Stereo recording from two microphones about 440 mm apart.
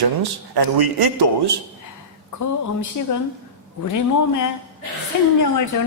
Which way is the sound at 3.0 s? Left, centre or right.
Left.